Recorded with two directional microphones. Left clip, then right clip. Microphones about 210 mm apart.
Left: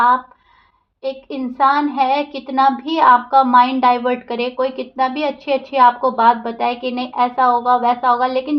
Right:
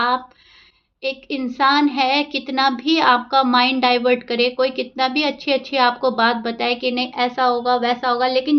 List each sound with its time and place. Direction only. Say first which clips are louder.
1.0 s a woman's voice: even; 40° right (ahead or behind)